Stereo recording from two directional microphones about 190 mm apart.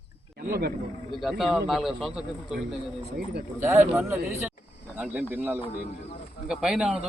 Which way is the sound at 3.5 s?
15° right (ahead or behind).